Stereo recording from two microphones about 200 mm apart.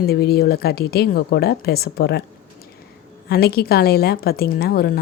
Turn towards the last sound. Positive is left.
turn(degrees=50)  # may be behind; listen again after turning